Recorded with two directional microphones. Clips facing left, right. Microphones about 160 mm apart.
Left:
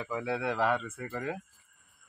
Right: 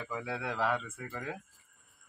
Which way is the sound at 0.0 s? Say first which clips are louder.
Left 5 dB; 5° left (ahead or behind).